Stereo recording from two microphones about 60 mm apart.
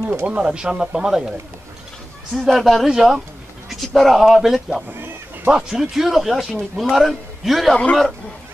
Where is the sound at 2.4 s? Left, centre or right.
Centre.